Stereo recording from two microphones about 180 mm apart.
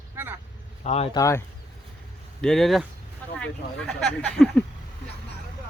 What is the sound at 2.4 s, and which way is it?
Speech, 5° left (ahead or behind).